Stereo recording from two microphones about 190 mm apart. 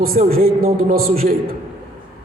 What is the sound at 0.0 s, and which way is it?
A man's voice, 50° right (ahead or behind).